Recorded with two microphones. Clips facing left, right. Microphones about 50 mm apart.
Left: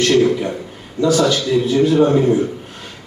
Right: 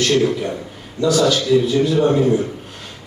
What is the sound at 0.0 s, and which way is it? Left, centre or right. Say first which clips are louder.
A man's voice: left 3 dB; left.